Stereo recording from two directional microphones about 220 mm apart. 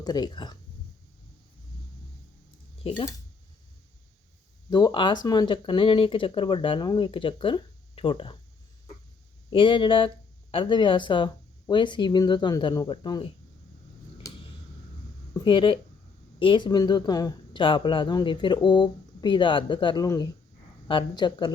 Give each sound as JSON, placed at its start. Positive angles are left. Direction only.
{"t": 0.0, "sound": "speech", "side_deg": 20}
{"t": 4.7, "sound": "speech", "side_deg": 20}
{"t": 9.5, "sound": "speech", "side_deg": 25}
{"t": 15.3, "sound": "speech", "side_deg": 25}